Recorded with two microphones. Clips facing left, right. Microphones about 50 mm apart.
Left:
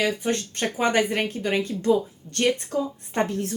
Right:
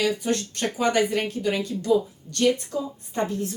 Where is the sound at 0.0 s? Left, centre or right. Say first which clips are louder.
Even; left.